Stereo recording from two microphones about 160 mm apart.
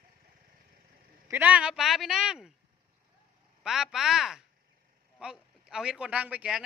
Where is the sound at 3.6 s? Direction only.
5° right (ahead or behind).